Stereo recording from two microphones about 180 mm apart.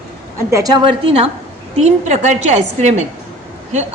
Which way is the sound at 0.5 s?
20° right (ahead or behind).